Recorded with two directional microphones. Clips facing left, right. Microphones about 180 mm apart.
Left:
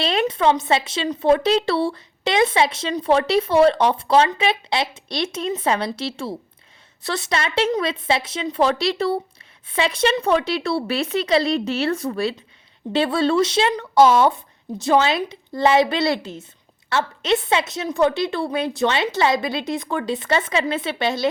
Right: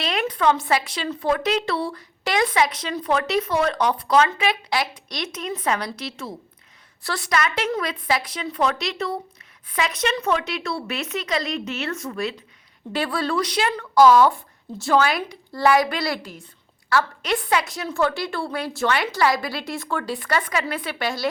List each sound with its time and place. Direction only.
0.0 s a woman's voice: 30° left (ahead or behind)